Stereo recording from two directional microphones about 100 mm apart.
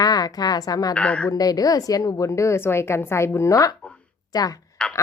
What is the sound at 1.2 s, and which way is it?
A woman's voice, 40° left (ahead or behind).